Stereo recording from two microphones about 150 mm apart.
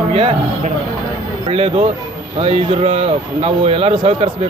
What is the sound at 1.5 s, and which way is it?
A man's voice, 40° right (ahead or behind).